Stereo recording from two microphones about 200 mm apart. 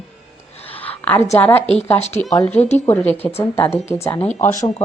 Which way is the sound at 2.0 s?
35° left (ahead or behind).